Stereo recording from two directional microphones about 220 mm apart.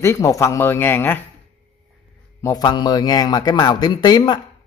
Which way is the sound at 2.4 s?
20° left (ahead or behind).